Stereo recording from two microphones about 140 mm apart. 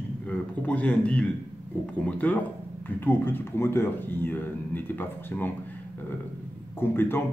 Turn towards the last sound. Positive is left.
turn(degrees=15)  # may be behind; listen again after turning